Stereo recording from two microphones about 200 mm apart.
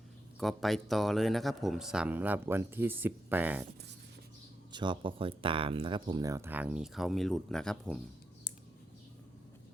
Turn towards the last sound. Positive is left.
turn(degrees=5)  # may be behind; listen again after turning